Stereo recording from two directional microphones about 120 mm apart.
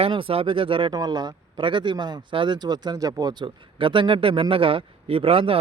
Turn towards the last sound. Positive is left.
turn(degrees=-50)  # may be behind; listen again after turning